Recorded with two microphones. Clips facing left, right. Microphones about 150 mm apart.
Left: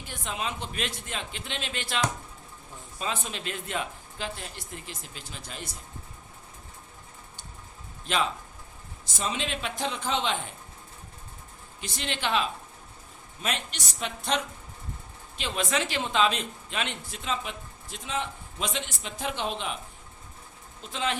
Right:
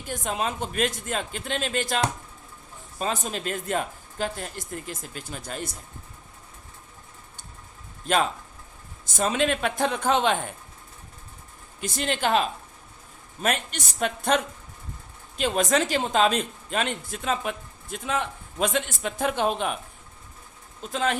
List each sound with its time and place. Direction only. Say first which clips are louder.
0.1 s speech: right 6 dB; 45° right (ahead or behind)
3.0 s speech: right 5 dB; 40° right (ahead or behind)
8.0 s speech: right 5 dB; 45° right (ahead or behind)
11.8 s speech: right 6 dB; 45° right (ahead or behind)
20.9 s speech: right 4 dB; 45° right (ahead or behind)